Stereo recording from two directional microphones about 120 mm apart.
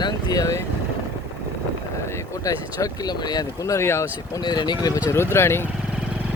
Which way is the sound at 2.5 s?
30° left (ahead or behind).